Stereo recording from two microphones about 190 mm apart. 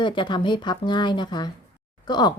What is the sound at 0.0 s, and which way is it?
A woman's voice, 25° left (ahead or behind).